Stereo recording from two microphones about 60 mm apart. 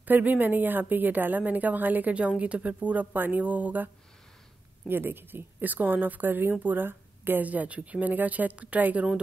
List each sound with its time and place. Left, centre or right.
0.0 s a woman's voice: right